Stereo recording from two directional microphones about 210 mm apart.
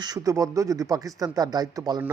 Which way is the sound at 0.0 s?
15° right (ahead or behind).